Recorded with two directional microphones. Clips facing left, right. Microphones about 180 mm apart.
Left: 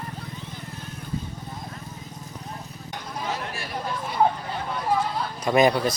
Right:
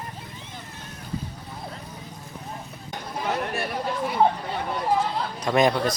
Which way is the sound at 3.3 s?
60° right (ahead or behind).